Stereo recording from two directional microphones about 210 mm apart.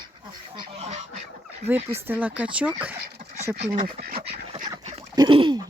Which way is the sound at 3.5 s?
45° right (ahead or behind).